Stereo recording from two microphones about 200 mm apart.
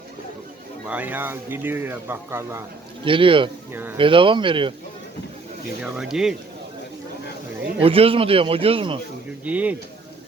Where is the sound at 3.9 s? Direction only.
25° right (ahead or behind).